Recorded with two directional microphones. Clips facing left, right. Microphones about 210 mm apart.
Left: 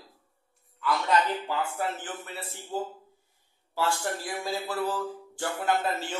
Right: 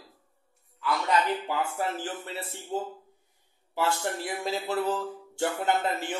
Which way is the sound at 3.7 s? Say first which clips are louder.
Right 1 dB; 20° right (ahead or behind).